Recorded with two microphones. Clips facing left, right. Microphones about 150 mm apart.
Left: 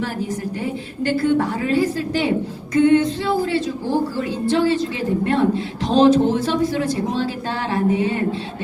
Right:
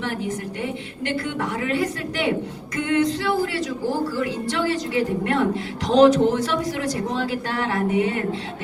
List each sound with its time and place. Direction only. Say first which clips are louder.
1.1 s a woman's voice: left 8 dB; 30° left (ahead or behind)